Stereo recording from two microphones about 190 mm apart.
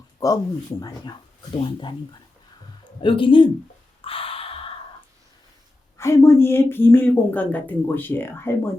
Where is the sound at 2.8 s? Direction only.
25° left (ahead or behind).